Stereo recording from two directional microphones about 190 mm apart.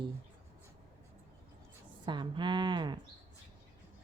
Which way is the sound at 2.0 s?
25° right (ahead or behind).